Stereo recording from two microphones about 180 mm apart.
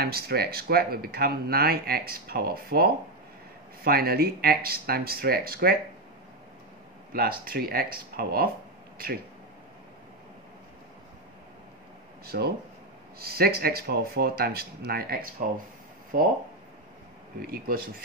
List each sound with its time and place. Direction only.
0.0 s speech: 60° right (ahead or behind)
7.1 s speech: 55° right (ahead or behind)
12.3 s speech: 60° right (ahead or behind)
17.4 s speech: 55° right (ahead or behind)